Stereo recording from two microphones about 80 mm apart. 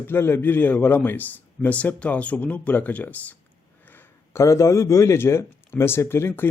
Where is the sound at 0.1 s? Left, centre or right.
Left.